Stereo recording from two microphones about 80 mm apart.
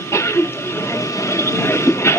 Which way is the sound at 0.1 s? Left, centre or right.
Left.